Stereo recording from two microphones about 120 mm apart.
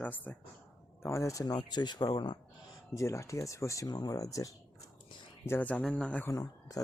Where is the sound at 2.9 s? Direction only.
25° left (ahead or behind).